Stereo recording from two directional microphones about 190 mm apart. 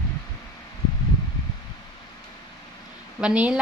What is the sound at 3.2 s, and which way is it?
Speech, 5° right (ahead or behind).